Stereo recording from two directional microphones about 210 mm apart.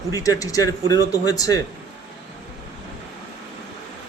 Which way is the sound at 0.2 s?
15° left (ahead or behind).